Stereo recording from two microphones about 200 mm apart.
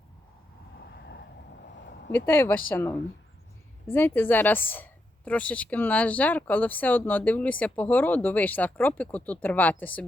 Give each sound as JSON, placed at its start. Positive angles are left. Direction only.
{"t": 0.8, "sound": "vehicle", "side_deg": 60}
{"t": 2.1, "sound": "a woman's voice", "side_deg": 10}